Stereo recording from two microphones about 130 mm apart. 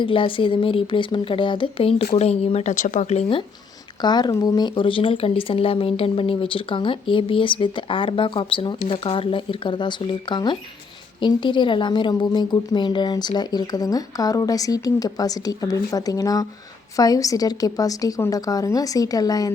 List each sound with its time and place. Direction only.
0.0 s speech: 40° left (ahead or behind)
4.0 s a woman's voice: 35° left (ahead or behind)